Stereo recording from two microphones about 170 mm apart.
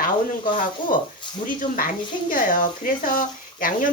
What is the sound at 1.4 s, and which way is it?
Speech, 55° left (ahead or behind).